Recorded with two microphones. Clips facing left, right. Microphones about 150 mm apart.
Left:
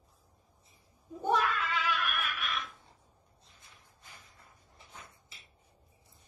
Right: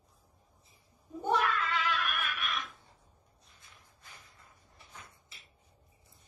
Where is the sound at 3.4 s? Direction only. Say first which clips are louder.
Even; 25° left (ahead or behind).